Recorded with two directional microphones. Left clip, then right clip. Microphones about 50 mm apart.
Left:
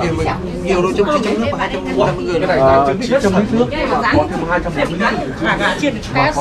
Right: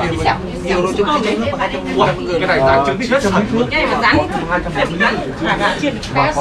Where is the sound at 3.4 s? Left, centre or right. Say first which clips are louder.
Right 1 dB; centre.